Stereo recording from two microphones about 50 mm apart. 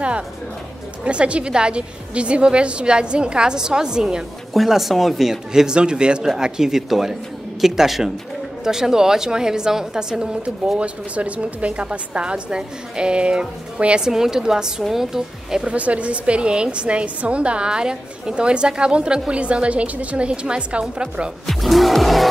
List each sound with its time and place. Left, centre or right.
1.0 s a woman's voice: right
4.6 s speech: centre
10.8 s a woman's voice: right; by 15.7 s centre
15.7 s a woman's voice: right
21.5 s speech: centre